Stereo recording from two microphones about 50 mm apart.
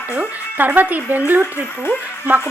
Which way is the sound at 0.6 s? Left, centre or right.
Right.